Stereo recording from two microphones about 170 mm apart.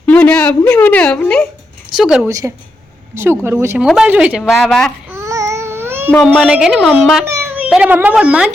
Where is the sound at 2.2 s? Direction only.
20° right (ahead or behind); by 4.9 s 5° left (ahead or behind).